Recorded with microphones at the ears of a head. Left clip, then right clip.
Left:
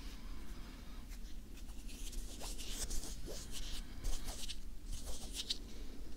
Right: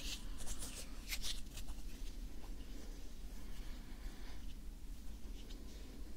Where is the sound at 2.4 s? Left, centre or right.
Left.